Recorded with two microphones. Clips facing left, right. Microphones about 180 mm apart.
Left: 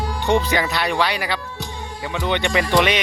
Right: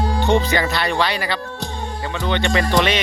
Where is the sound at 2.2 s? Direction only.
15° left (ahead or behind).